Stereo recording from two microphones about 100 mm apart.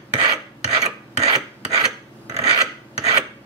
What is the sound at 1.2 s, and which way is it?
Filing, 90° right.